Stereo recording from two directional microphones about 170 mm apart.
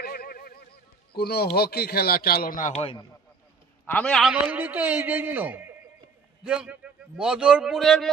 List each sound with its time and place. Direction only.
0.0 s a sound: 60° left (ahead or behind)
1.1 s a man's voice: 65° left (ahead or behind)
2.8 s a man's voice: 30° left (ahead or behind)
3.8 s a man's voice: 10° left (ahead or behind)